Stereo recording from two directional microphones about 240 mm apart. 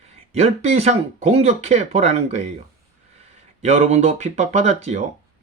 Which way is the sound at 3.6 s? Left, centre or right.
Right.